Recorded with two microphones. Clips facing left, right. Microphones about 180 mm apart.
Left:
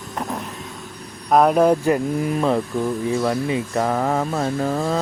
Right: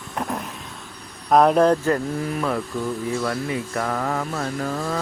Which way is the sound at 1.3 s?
5° left (ahead or behind).